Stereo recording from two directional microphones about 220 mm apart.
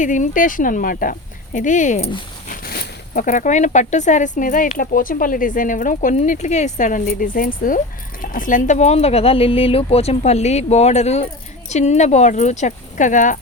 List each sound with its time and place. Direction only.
0.0 s speech: 35° left (ahead or behind)
2.5 s speech: 45° left (ahead or behind)